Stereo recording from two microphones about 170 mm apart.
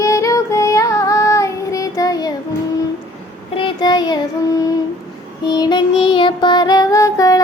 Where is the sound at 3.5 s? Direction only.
25° left (ahead or behind).